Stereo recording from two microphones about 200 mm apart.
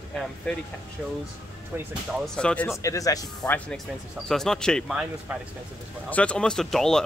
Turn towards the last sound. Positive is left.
turn(degrees=0)  # may be behind; listen again after turning